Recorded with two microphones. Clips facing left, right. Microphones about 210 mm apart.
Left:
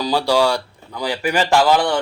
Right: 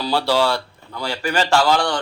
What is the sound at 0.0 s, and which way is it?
A man's voice, 15° left (ahead or behind).